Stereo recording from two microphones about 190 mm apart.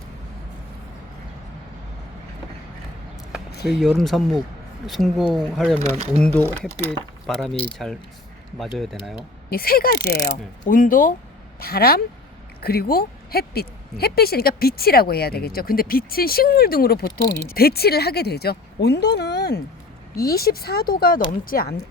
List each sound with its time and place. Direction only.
3.5 s a sound: 60° left (ahead or behind)
3.8 s speech: centre (ahead or behind)
5.8 s speech: 35° right (ahead or behind)
6.2 s speech: 10° left (ahead or behind)
9.5 s speech: 50° left (ahead or behind)